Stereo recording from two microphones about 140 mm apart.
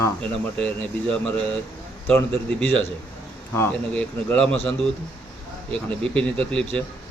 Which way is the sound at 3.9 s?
10° left (ahead or behind).